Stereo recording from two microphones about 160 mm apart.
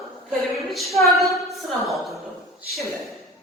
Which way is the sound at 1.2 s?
Centre (ahead or behind).